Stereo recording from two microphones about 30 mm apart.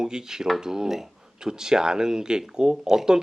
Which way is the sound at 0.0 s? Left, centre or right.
Right.